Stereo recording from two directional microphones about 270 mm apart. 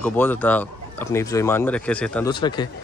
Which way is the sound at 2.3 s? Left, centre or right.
Centre.